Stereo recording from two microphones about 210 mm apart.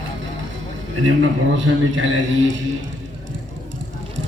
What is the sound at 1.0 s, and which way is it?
A man's voice, 65° right (ahead or behind).